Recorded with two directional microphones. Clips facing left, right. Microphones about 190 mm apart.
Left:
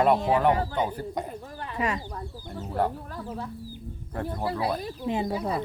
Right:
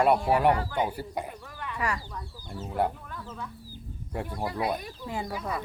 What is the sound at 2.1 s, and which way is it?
Speech, 40° left (ahead or behind).